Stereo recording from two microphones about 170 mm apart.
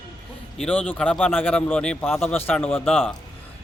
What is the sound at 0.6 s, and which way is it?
A man's voice, 5° left (ahead or behind).